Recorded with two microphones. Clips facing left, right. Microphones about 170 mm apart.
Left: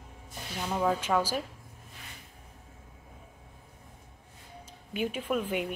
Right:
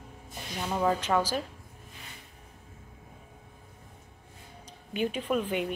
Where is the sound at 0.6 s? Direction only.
Centre (ahead or behind).